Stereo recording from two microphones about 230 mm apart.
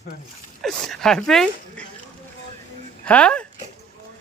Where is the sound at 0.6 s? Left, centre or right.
Centre.